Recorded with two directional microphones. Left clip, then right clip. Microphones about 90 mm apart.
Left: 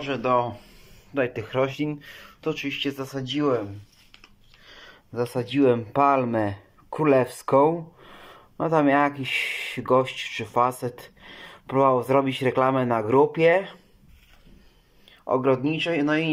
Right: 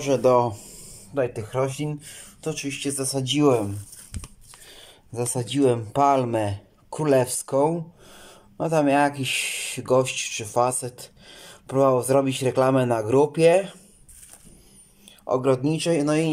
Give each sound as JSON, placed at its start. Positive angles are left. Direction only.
{"t": 0.0, "sound": "speech", "side_deg": -75}
{"t": 1.1, "sound": "speech", "side_deg": -25}
{"t": 4.6, "sound": "a sound", "side_deg": -45}
{"t": 5.1, "sound": "speech", "side_deg": -30}
{"t": 15.0, "sound": "speech", "side_deg": -30}
{"t": 15.6, "sound": "speech", "side_deg": -45}